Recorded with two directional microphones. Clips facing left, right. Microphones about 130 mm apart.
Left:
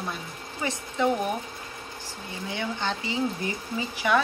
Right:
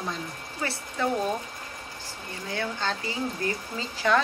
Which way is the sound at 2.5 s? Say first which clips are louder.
Even; 15° left (ahead or behind).